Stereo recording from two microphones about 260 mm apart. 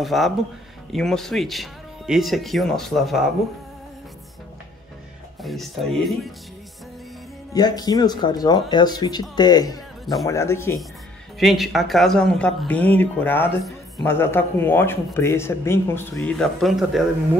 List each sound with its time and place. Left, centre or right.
0.0 s speech: centre
5.4 s speech: centre
7.5 s a man's voice: centre